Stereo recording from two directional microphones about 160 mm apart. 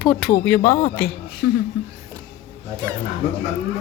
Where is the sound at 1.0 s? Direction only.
Centre (ahead or behind).